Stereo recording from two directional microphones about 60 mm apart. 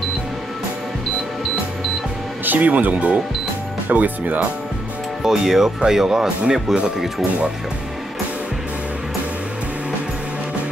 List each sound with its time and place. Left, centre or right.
2.4 s speech: right
5.2 s speech: centre